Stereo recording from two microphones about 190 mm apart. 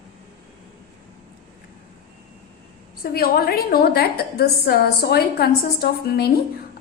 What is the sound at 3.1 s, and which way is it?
A woman's voice, 55° left (ahead or behind).